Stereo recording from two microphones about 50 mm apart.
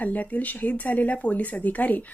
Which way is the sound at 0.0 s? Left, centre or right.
Left.